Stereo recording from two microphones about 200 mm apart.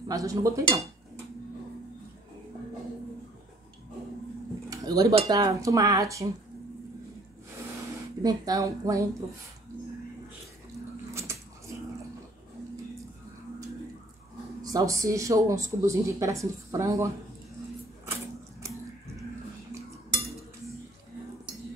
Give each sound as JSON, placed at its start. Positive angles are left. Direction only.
{"t": 0.1, "sound": "speech", "side_deg": -15}
{"t": 4.6, "sound": "a sound", "side_deg": -20}
{"t": 5.1, "sound": "speech", "side_deg": -20}
{"t": 8.2, "sound": "speech", "side_deg": -20}
{"t": 11.1, "sound": "a sound", "side_deg": -15}
{"t": 14.6, "sound": "speech", "side_deg": -15}
{"t": 20.2, "sound": "cutlery", "side_deg": 0}